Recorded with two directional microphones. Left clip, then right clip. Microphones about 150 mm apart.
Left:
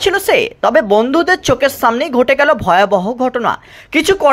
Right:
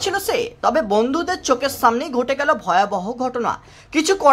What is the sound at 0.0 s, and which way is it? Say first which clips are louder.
A woman's voice: left 8 dB; 30° left (ahead or behind).